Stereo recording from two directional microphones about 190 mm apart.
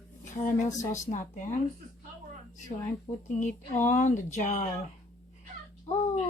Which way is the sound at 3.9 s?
40° left (ahead or behind).